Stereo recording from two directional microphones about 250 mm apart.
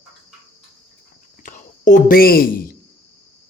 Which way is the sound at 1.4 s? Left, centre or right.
Left.